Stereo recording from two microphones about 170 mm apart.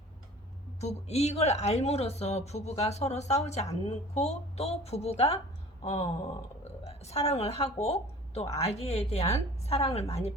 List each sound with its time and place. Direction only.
0.8 s speech: 40° left (ahead or behind)